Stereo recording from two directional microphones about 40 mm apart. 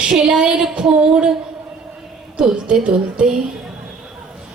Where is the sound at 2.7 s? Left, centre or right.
Centre.